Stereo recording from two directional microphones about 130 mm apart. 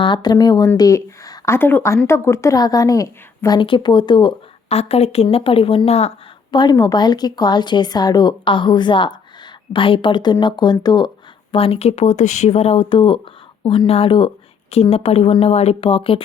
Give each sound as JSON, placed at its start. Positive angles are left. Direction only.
{"t": 0.0, "sound": "a woman's voice", "side_deg": 35}
{"t": 3.6, "sound": "a woman's voice", "side_deg": 40}
{"t": 4.7, "sound": "speech", "side_deg": 50}
{"t": 6.5, "sound": "a woman's voice", "side_deg": 35}
{"t": 11.5, "sound": "speech", "side_deg": 45}